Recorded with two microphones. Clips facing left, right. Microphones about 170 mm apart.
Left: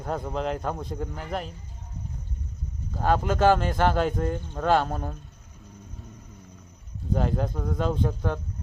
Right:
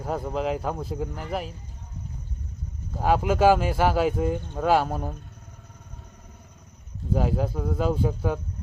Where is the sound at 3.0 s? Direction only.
10° right (ahead or behind).